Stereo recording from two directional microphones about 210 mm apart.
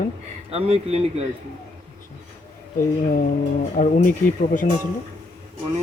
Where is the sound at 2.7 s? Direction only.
40° left (ahead or behind).